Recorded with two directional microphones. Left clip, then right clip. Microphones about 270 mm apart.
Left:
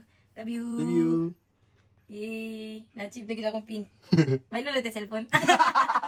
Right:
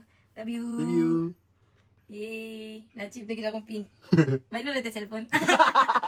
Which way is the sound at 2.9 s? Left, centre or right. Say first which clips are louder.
Even; centre.